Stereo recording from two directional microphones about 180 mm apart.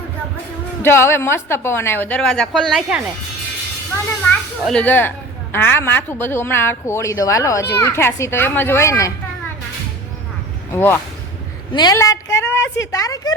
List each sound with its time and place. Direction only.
0.8 s a woman's voice: 15° left (ahead or behind)
4.6 s a woman's voice: 5° left (ahead or behind)
10.7 s a woman's voice: 10° left (ahead or behind)
11.7 s speech: 20° left (ahead or behind)